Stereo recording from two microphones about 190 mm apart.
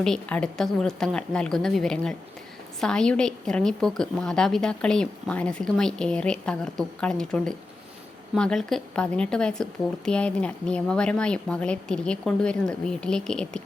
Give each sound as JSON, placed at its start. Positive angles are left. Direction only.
{"t": 0.0, "sound": "a woman's voice", "side_deg": 5}